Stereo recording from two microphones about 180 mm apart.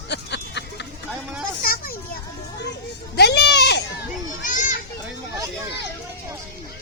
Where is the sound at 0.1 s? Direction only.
75° left (ahead or behind).